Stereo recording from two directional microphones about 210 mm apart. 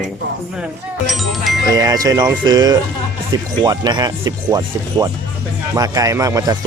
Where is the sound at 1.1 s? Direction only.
Centre (ahead or behind).